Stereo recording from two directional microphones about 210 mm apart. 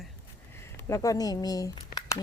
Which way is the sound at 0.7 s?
15° left (ahead or behind).